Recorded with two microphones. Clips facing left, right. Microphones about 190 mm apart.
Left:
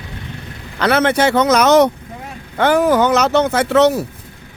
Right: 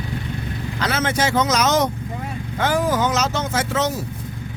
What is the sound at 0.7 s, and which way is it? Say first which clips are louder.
Speech: left 8 dB; 65° left (ahead or behind).